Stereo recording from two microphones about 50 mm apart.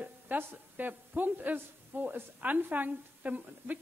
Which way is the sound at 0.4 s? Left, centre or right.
Right.